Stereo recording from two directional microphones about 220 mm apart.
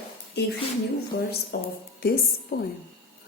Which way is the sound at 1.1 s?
45° left (ahead or behind).